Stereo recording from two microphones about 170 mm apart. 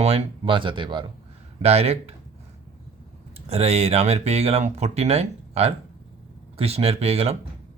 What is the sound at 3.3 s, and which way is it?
Speech, 40° right (ahead or behind).